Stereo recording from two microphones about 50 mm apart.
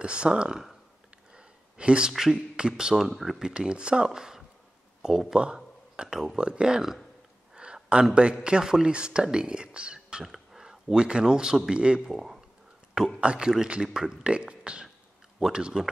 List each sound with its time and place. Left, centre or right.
0.0 s speech: right
1.3 s a sound: centre
2.3 s speech: centre
3.0 s speech: centre
3.5 s speech: centre
7.5 s a sound: centre
8.1 s speech: right